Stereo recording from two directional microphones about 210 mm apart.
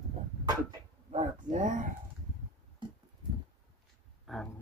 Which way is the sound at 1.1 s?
35° right (ahead or behind).